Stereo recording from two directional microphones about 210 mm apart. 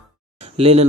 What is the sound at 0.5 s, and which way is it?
Speech, 30° right (ahead or behind).